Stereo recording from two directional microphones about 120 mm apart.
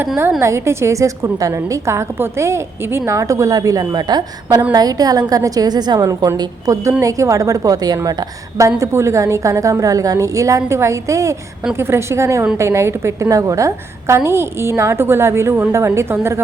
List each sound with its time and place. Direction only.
0.2 s a woman's voice: 20° right (ahead or behind)